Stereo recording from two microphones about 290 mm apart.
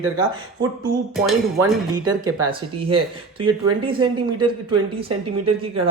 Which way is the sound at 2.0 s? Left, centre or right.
Right.